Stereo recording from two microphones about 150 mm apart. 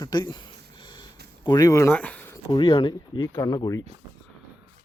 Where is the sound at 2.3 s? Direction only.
30° left (ahead or behind).